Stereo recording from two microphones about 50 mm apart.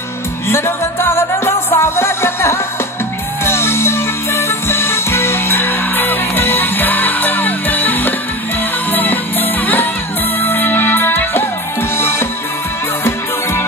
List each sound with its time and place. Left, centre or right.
0.5 s music: left
12.0 s music: left